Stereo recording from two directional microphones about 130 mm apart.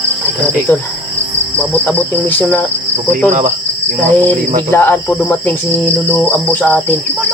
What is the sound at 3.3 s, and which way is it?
Cricket, 75° right (ahead or behind).